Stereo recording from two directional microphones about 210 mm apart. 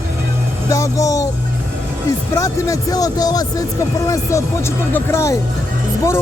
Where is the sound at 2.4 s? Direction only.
15° left (ahead or behind).